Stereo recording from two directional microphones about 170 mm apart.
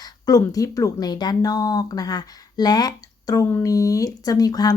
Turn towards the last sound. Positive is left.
turn(degrees=25)  # may be behind; listen again after turning